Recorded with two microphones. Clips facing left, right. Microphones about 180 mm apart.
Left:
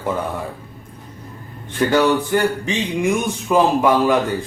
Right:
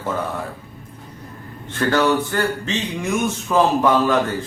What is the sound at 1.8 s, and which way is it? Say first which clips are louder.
A man's voice: left 2 dB; 15° left (ahead or behind).